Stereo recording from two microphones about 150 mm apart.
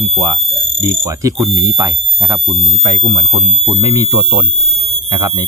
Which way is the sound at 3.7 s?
25° right (ahead or behind).